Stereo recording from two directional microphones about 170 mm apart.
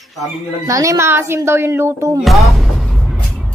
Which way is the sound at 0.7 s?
20° right (ahead or behind).